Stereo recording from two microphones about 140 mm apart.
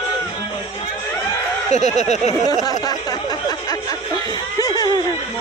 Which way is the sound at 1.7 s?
55° left (ahead or behind).